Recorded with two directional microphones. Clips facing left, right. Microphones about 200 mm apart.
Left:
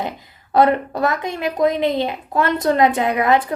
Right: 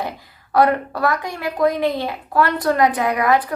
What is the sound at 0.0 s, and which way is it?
Speech, 20° left (ahead or behind).